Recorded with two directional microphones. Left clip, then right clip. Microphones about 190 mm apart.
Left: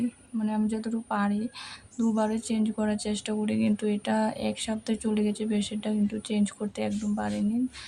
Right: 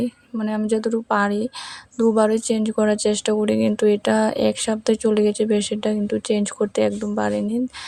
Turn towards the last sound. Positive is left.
turn(degrees=-40)  # may be behind; listen again after turning